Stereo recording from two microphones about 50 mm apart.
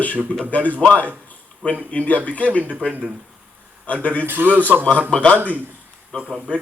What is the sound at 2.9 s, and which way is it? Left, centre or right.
Speech, right.